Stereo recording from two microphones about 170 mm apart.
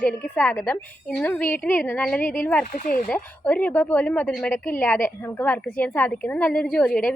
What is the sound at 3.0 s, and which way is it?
A woman's voice, 10° left (ahead or behind).